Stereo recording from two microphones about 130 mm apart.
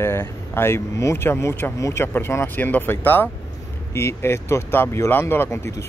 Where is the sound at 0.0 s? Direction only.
20° left (ahead or behind).